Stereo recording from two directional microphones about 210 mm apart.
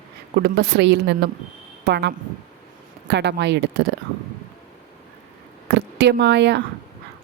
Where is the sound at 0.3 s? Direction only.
50° right (ahead or behind).